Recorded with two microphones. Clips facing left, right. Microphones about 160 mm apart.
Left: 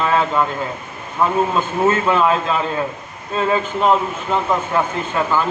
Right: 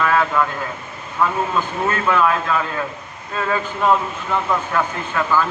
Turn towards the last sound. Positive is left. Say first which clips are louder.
# left 1 dB
turn(degrees=20)  # may be behind; listen again after turning